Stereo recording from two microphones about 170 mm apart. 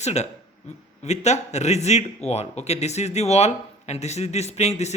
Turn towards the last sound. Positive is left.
turn(degrees=40)  # may be behind; listen again after turning